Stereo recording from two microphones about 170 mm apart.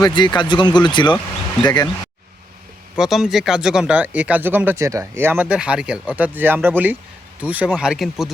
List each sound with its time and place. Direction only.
0.0 s speech: 25° left (ahead or behind)
2.9 s speech: centre (ahead or behind)